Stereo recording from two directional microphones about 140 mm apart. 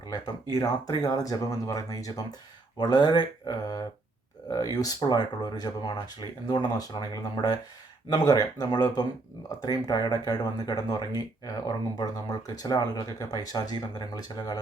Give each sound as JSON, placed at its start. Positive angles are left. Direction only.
{"t": 0.1, "sound": "speech", "side_deg": 25}